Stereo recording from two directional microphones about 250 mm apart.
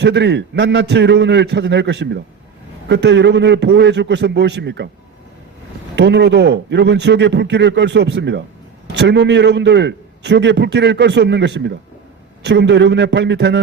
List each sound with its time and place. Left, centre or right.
0.0 s a man's voice: right
6.0 s a man's voice: right